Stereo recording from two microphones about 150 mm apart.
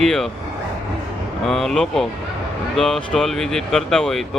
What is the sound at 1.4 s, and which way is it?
Speech, centre (ahead or behind).